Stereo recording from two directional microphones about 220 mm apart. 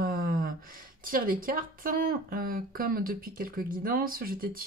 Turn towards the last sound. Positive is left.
turn(degrees=-40)  # may be behind; listen again after turning